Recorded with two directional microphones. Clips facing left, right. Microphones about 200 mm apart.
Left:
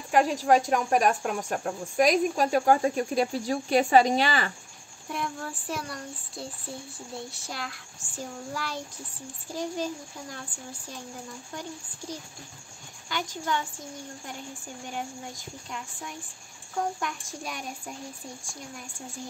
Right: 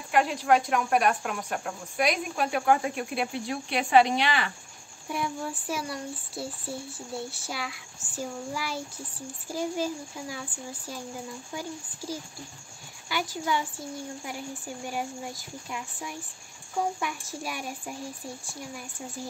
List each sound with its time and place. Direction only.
0.1 s a woman's voice: 40° left (ahead or behind)
5.1 s child singing: 5° right (ahead or behind)
11.5 s child singing: 5° right (ahead or behind)
13.1 s a woman's voice: 5° right (ahead or behind)
17.0 s child singing: 5° right (ahead or behind)